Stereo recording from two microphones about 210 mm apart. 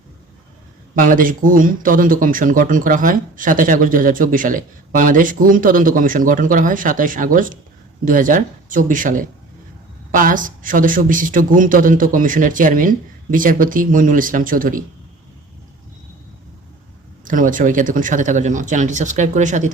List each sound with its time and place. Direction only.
1.0 s speech: 40° right (ahead or behind)
17.2 s speech: 40° right (ahead or behind)